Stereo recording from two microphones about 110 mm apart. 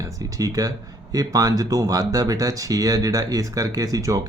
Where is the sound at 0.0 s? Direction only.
30° right (ahead or behind).